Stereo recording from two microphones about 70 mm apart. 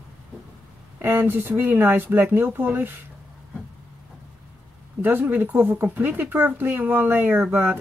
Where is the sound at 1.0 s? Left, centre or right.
Right.